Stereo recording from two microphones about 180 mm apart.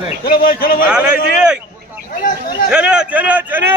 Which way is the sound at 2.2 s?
55° left (ahead or behind).